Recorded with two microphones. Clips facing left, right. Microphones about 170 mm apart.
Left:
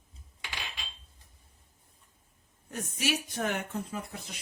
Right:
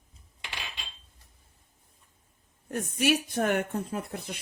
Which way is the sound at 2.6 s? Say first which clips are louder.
Right 7 dB; 55° right (ahead or behind).